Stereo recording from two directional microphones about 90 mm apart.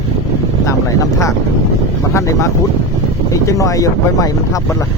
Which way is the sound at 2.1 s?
35° left (ahead or behind).